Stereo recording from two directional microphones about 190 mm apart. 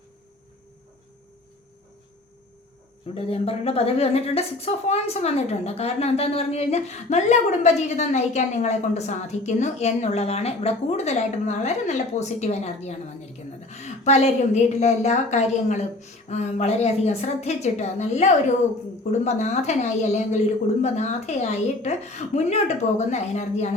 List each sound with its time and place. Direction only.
3.2 s a woman's voice: 30° left (ahead or behind)